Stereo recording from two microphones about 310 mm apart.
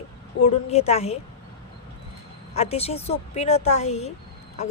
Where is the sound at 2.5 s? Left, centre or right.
Centre.